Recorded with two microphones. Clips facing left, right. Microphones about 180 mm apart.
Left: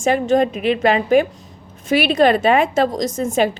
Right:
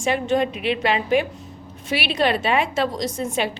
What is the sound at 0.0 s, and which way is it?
A woman's voice, 45° left (ahead or behind).